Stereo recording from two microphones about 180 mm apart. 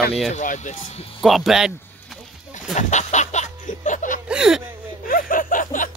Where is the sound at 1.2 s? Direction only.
Centre (ahead or behind).